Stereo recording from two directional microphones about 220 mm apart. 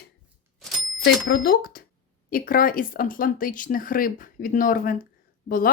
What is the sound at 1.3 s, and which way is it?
Speech, 45° left (ahead or behind).